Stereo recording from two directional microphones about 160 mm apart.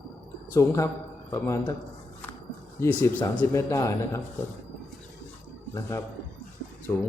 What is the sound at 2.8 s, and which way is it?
A man's voice, 15° left (ahead or behind).